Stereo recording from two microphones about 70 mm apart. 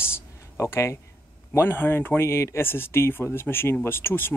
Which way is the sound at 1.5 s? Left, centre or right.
Left.